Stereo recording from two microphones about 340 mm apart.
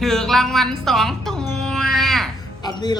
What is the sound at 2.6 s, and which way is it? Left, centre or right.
Speech, centre.